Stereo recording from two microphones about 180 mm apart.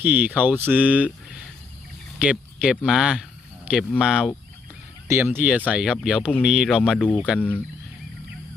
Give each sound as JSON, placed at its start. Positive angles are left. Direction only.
{"t": 0.0, "sound": "speech", "side_deg": -10}
{"t": 2.1, "sound": "speech", "side_deg": -5}
{"t": 7.3, "sound": "speech", "side_deg": 10}